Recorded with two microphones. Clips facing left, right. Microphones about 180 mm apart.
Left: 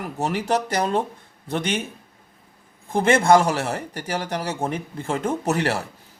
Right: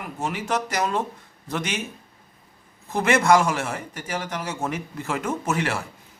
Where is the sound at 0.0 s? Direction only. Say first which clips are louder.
Left 4 dB; 40° left (ahead or behind).